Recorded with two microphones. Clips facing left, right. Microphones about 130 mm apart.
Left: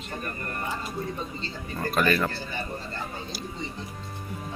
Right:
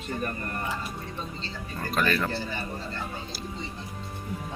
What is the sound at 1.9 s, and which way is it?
Speech, 5° left (ahead or behind).